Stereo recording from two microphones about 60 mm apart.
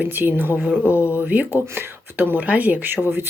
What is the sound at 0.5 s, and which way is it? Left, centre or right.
Speech, centre.